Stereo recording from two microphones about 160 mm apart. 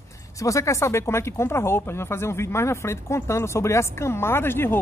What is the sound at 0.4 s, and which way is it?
Speech, 20° left (ahead or behind).